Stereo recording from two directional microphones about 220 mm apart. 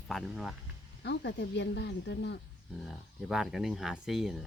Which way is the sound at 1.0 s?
50° left (ahead or behind).